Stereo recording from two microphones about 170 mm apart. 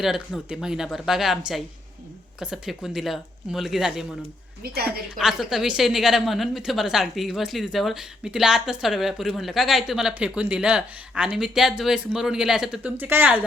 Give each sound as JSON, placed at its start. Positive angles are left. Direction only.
{"t": 0.0, "sound": "a woman's voice", "side_deg": 0}
{"t": 2.4, "sound": "a woman's voice", "side_deg": -5}
{"t": 4.6, "sound": "a woman's voice", "side_deg": -65}
{"t": 5.1, "sound": "a woman's voice", "side_deg": 0}